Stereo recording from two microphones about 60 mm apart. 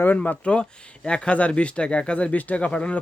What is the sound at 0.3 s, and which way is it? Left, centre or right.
Speech, centre.